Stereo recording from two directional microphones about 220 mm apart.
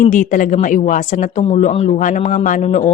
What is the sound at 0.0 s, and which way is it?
Speech, 35° left (ahead or behind).